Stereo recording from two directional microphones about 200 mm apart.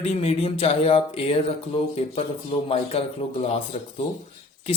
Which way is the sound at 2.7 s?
30° left (ahead or behind).